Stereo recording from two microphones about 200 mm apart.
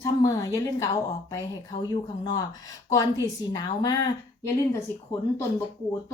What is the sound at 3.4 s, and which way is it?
Speech, 20° left (ahead or behind).